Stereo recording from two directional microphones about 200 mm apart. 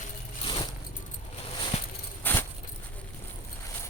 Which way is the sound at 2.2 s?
10° left (ahead or behind).